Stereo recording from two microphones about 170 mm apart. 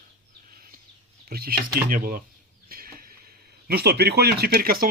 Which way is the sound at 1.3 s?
60° right (ahead or behind).